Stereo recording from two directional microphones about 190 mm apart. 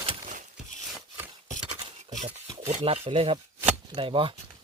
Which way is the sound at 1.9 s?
35° right (ahead or behind).